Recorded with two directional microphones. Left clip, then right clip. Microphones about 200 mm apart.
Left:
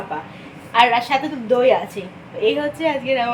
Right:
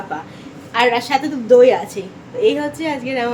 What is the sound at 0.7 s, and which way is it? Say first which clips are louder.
Speech: even; 10° right (ahead or behind).